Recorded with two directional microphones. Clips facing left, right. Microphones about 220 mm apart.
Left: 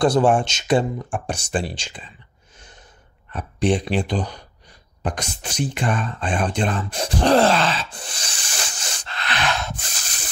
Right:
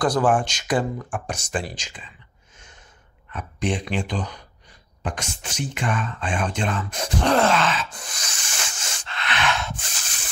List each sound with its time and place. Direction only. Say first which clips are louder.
0.0 s speech: left 3 dB; 25° left (ahead or behind)
3.3 s speech: left 6 dB; 35° left (ahead or behind)